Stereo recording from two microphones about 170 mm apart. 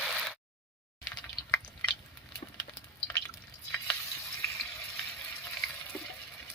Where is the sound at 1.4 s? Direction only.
25° left (ahead or behind).